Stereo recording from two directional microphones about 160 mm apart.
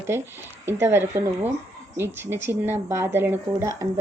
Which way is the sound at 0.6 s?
15° right (ahead or behind).